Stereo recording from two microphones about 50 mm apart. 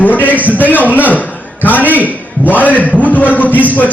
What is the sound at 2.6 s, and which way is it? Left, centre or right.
Speech, left.